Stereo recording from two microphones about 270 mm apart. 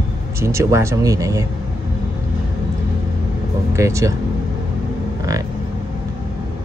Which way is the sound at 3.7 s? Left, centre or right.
Centre.